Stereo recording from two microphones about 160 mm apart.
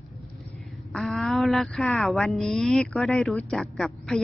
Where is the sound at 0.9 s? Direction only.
Centre (ahead or behind).